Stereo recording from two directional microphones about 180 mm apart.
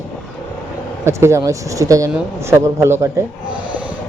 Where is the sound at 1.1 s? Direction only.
15° right (ahead or behind).